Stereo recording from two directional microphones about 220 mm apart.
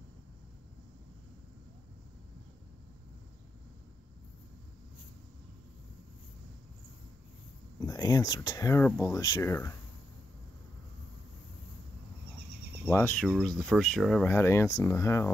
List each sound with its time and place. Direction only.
7.8 s speech: 15° left (ahead or behind)
12.9 s speech: 10° left (ahead or behind)